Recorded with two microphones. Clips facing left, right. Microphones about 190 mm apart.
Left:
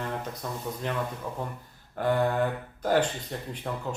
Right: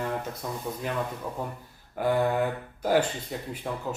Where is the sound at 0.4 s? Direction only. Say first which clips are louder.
Left 1 dB; 10° right (ahead or behind).